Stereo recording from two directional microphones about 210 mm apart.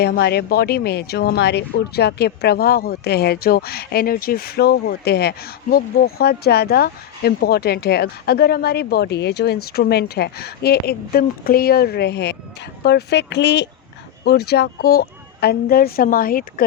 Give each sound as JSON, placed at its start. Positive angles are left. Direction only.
{"t": 0.0, "sound": "speech", "side_deg": 50}